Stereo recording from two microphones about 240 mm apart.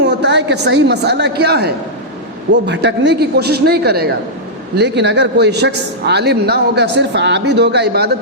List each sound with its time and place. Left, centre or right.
0.0 s a man's voice: right